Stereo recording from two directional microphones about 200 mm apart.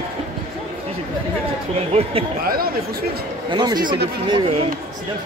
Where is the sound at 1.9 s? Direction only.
30° right (ahead or behind).